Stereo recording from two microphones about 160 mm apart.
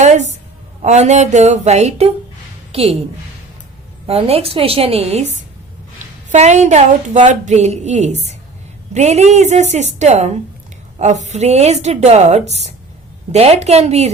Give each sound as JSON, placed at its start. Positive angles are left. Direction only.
{"t": 0.0, "sound": "a sound", "side_deg": -45}
{"t": 0.8, "sound": "a woman's voice", "side_deg": -45}
{"t": 4.0, "sound": "a woman's voice", "side_deg": -40}
{"t": 6.3, "sound": "a woman's voice", "side_deg": -45}